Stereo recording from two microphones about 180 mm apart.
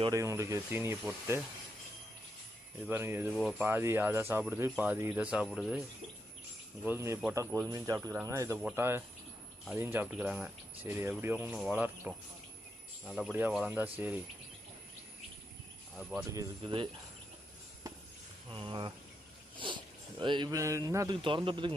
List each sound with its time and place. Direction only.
0.0 s speech: 15° right (ahead or behind)
2.8 s speech: 10° right (ahead or behind)
6.8 s speech: 15° right (ahead or behind)
16.0 s speech: 5° right (ahead or behind)
16.3 s speech: 20° right (ahead or behind)
18.5 s speech: 25° right (ahead or behind)
21.2 s speech: 30° right (ahead or behind)